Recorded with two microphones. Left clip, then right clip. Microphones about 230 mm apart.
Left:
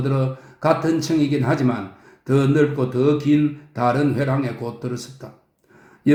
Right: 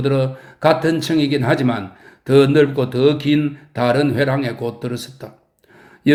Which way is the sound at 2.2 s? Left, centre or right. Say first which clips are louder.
Right 6 dB; right.